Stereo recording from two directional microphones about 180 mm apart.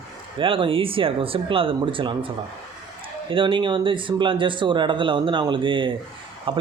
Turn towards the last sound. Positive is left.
turn(degrees=-30)  # may be behind; listen again after turning